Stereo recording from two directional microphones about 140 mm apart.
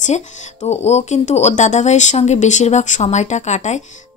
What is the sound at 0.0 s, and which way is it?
Speech, 55° left (ahead or behind).